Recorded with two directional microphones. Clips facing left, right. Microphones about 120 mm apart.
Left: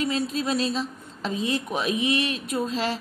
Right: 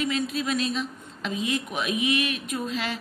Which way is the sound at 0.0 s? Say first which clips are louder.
Left 1 dB; 30° left (ahead or behind).